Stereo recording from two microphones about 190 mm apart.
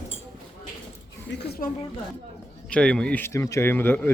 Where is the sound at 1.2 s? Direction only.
55° left (ahead or behind).